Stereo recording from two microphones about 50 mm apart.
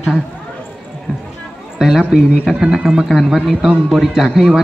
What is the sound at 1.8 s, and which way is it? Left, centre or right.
A man's voice, centre.